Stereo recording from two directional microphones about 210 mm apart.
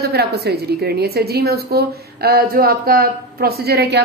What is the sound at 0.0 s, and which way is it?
A woman's voice, 50° right (ahead or behind).